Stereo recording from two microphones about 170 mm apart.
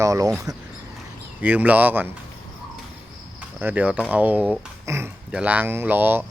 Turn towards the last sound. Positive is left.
turn(degrees=-10)  # may be behind; listen again after turning